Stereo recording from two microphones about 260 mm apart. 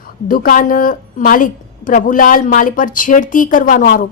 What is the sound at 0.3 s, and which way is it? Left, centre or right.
A woman's voice, left.